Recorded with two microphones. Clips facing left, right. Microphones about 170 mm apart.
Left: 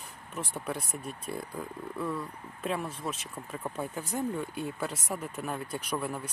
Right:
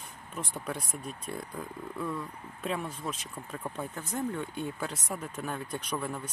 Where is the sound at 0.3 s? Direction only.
5° left (ahead or behind).